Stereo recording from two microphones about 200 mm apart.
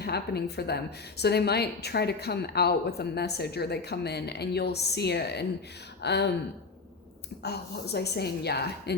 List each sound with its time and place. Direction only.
0.0 s a woman's voice: 55° left (ahead or behind)
7.4 s a woman's voice: 55° left (ahead or behind)